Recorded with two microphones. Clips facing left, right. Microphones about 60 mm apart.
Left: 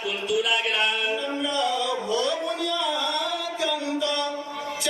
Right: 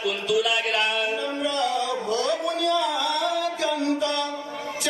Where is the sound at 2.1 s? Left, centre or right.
Right.